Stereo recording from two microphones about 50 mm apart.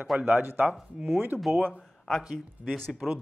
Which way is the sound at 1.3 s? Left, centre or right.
Right.